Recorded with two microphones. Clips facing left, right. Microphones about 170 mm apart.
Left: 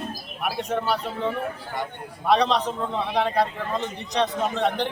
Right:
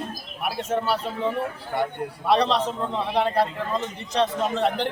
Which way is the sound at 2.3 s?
5° right (ahead or behind).